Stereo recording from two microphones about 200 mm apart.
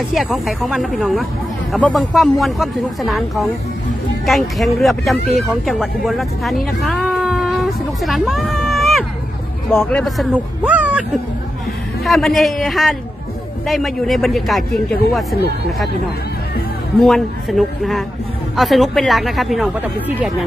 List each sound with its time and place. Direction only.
0.1 s speech: centre (ahead or behind)
17.0 s speech: centre (ahead or behind)